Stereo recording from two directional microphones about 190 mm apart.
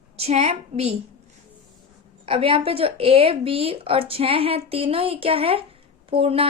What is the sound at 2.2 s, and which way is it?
Speech, 30° right (ahead or behind).